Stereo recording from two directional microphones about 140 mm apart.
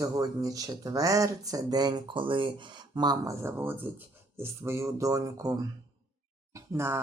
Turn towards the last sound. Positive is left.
turn(degrees=-15)  # may be behind; listen again after turning